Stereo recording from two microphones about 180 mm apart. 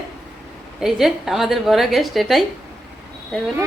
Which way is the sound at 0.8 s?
Centre (ahead or behind).